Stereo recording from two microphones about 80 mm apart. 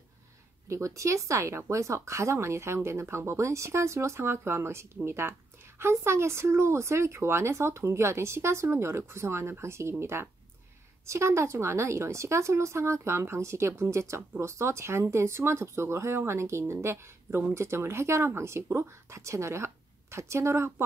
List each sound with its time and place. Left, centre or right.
0.7 s speech: right